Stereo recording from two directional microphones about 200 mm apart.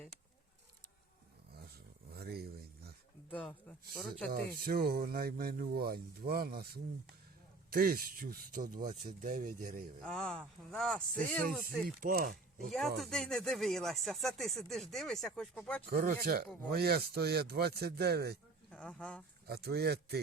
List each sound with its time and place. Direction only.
2.1 s a sound: 50° right (ahead or behind)
3.2 s a man's voice: 5° left (ahead or behind)
4.3 s speech: 50° right (ahead or behind)
10.0 s speech: 5° left (ahead or behind)
11.6 s speech: 45° right (ahead or behind)
12.6 s speech: centre (ahead or behind)
15.9 s speech: 50° right (ahead or behind)
18.7 s speech: 5° left (ahead or behind)
19.5 s speech: 55° right (ahead or behind)